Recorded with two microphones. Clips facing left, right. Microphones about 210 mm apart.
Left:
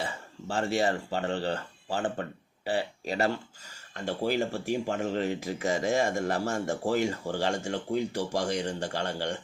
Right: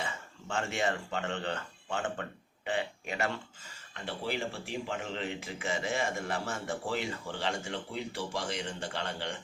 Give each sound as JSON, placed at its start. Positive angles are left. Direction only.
{"t": 0.0, "sound": "speech", "side_deg": 35}